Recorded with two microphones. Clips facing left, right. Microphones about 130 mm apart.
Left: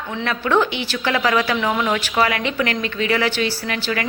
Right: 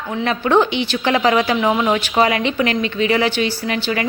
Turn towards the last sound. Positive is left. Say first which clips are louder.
# right 3 dB
turn(degrees=-25)  # may be behind; listen again after turning